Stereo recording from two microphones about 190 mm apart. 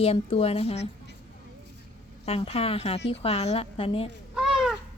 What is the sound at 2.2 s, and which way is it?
Speech, 30° left (ahead or behind).